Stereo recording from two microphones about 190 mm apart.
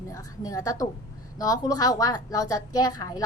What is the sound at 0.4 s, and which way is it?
A woman's voice, 20° left (ahead or behind).